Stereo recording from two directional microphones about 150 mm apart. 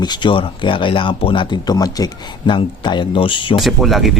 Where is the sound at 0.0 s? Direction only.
30° left (ahead or behind).